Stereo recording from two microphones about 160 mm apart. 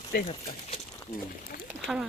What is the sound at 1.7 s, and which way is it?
Speech, 5° right (ahead or behind).